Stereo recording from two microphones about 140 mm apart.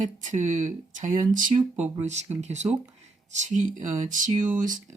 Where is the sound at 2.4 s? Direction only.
55° right (ahead or behind).